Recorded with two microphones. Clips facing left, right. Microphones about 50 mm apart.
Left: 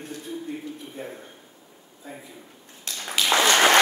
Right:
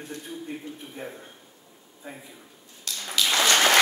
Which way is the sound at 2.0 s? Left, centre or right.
Right.